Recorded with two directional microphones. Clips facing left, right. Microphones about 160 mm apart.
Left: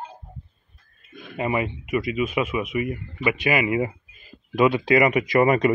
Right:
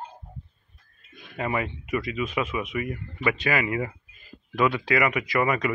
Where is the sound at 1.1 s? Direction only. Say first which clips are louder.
Left 8 dB; 50° left (ahead or behind).